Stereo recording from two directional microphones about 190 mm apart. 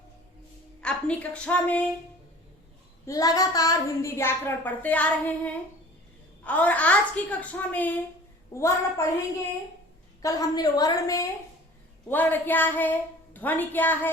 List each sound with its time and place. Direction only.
0.8 s speech: 5° left (ahead or behind)
3.1 s speech: 20° left (ahead or behind)
6.4 s speech: 10° left (ahead or behind)
10.2 s a woman's voice: 20° left (ahead or behind)